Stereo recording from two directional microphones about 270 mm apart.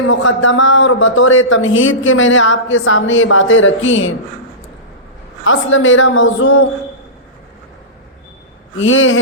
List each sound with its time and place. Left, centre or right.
0.1 s a man's voice: left
5.5 s a man's voice: left
8.8 s a man's voice: left